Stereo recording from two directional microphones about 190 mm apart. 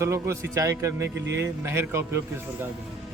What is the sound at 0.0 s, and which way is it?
Speech, 15° right (ahead or behind).